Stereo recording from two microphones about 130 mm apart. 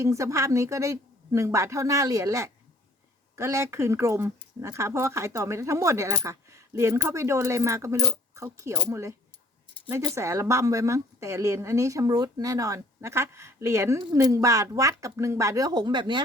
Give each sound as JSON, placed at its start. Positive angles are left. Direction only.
{"t": 0.0, "sound": "a woman's voice", "side_deg": -25}
{"t": 10.2, "sound": "a woman's voice", "side_deg": -25}